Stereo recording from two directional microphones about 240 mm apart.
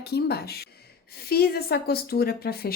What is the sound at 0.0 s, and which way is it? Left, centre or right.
Speech, left.